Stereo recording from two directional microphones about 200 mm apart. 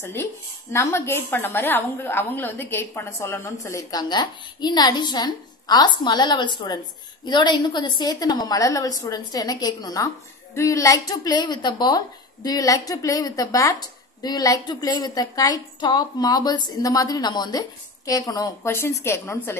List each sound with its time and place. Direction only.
0.0 s a woman's voice: 10° left (ahead or behind)